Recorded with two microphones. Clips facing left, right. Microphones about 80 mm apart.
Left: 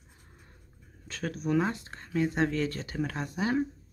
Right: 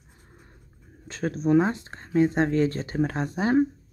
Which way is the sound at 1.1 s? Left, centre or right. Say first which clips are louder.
Right 8 dB; right.